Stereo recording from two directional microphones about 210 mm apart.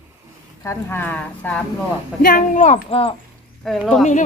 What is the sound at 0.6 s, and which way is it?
Speech, 10° left (ahead or behind).